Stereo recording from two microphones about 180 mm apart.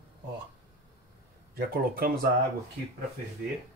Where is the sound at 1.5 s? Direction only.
60° right (ahead or behind).